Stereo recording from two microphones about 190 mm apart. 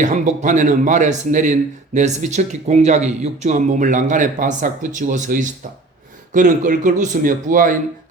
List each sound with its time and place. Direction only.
0.0 s speech: 40° right (ahead or behind)